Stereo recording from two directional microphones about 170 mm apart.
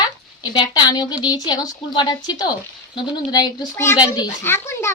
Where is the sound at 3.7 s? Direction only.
15° left (ahead or behind).